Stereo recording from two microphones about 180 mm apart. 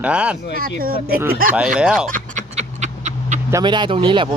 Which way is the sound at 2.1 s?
45° right (ahead or behind).